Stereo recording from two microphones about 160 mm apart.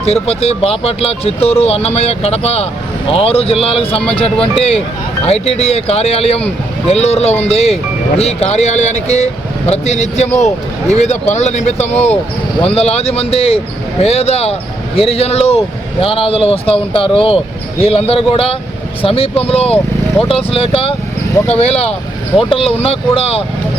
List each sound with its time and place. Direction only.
0.0 s speech: 40° left (ahead or behind)